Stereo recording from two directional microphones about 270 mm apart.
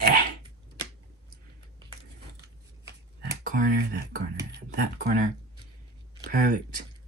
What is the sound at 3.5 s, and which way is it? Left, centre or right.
Speech, right.